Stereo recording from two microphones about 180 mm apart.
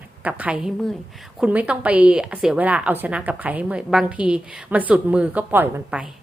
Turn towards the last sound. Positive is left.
turn(degrees=-10)  # may be behind; listen again after turning